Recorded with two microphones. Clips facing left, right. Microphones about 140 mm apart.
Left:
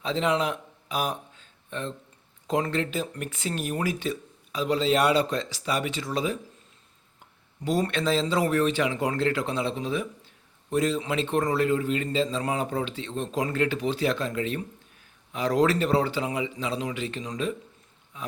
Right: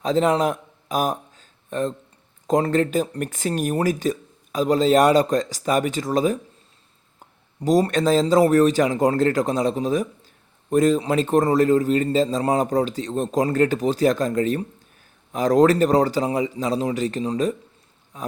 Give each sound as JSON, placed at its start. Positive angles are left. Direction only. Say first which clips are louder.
{"t": 0.0, "sound": "a sound", "louder": "right 6 dB", "side_deg": -45}
{"t": 2.5, "sound": "speech", "louder": "right 7 dB", "side_deg": -40}
{"t": 7.6, "sound": "speech", "louder": "right 7 dB", "side_deg": -40}